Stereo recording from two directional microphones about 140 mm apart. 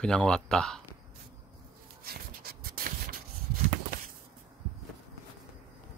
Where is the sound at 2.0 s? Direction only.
90° right.